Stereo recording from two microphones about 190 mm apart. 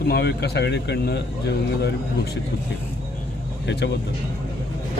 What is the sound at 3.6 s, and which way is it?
Speech, 65° left (ahead or behind).